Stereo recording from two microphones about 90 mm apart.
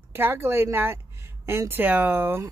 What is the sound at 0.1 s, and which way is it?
Speech, 25° right (ahead or behind).